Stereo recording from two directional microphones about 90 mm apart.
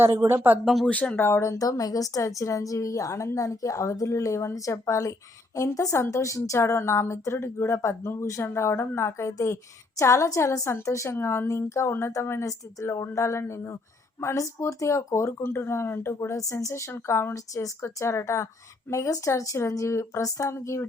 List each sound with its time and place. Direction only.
0.0 s speech: 25° right (ahead or behind)
0.6 s speech: centre (ahead or behind)
0.9 s speech: 15° left (ahead or behind); by 20.8 s 30° left (ahead or behind)